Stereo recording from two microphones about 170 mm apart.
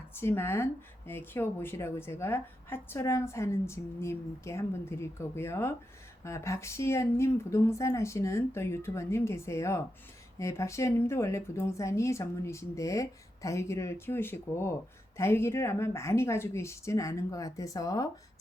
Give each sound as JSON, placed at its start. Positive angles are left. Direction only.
{"t": 0.1, "sound": "speech", "side_deg": 15}